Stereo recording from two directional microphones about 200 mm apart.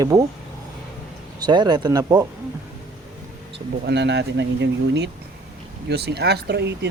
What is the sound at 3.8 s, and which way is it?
Speech, 60° right (ahead or behind).